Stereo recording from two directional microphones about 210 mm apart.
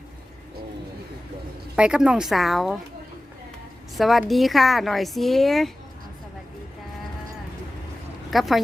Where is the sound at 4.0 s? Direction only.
Centre (ahead or behind).